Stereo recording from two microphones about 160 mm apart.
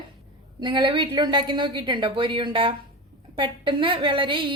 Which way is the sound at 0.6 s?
30° right (ahead or behind).